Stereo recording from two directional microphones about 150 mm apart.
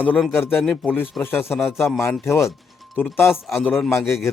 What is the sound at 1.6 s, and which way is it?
Speech, centre (ahead or behind).